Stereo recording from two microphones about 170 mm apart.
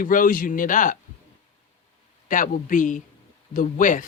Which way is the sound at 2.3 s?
50° left (ahead or behind).